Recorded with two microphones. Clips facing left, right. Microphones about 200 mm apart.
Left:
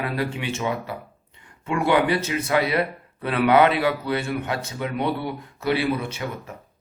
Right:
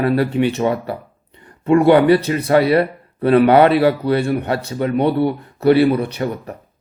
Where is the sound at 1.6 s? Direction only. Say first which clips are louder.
Right 9 dB; 35° right (ahead or behind).